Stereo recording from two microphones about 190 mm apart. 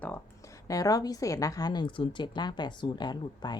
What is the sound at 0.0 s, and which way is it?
A woman's voice, 15° left (ahead or behind).